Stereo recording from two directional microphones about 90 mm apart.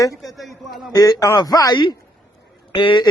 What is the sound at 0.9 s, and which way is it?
Speech, 45° left (ahead or behind).